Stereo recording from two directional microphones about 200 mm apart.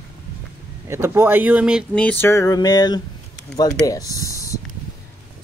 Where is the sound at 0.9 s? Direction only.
10° right (ahead or behind).